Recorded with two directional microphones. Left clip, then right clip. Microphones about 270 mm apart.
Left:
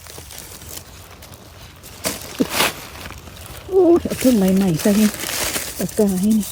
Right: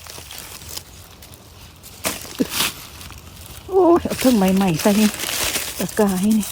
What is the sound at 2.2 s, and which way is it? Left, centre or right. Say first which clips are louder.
Walk: left 5 dB; centre.